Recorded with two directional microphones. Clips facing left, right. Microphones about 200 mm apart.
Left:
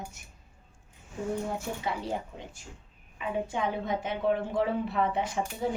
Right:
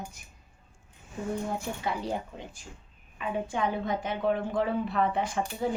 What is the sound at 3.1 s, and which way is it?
Speech, 20° left (ahead or behind).